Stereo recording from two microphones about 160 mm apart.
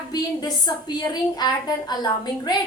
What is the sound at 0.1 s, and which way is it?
A woman's voice, 25° left (ahead or behind).